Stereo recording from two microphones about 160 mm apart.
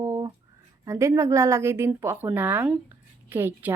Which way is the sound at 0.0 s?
20° right (ahead or behind).